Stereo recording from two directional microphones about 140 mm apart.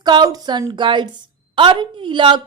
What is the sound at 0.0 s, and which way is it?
A woman's voice, 30° right (ahead or behind).